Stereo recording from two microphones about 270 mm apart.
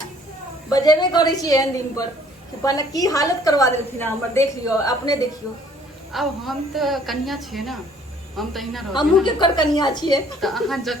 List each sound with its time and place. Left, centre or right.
0.7 s a woman's voice: centre
6.1 s a woman's voice: centre
9.2 s a woman's voice: centre
10.4 s a woman's voice: centre